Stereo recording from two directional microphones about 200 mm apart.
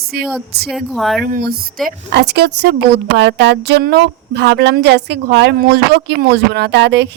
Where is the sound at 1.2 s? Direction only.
50° right (ahead or behind).